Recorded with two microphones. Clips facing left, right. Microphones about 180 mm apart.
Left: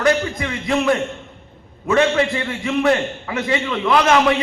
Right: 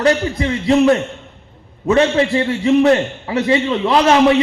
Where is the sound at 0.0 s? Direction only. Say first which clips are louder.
Right 3 dB; 30° right (ahead or behind).